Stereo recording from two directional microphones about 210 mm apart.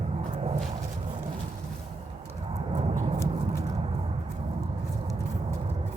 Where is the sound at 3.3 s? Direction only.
25° right (ahead or behind).